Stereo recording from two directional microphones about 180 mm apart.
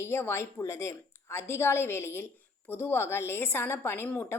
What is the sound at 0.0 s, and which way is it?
Speech, 15° left (ahead or behind).